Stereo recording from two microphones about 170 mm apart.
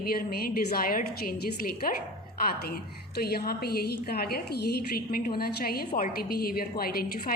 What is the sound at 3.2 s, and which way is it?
A woman's voice, 65° left (ahead or behind).